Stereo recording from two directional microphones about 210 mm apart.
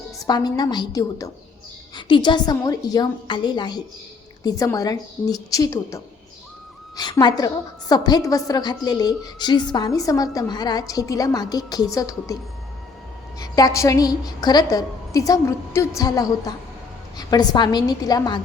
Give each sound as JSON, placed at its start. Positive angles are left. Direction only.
{"t": 0.3, "sound": "a woman's voice", "side_deg": 20}
{"t": 13.4, "sound": "a woman's voice", "side_deg": 15}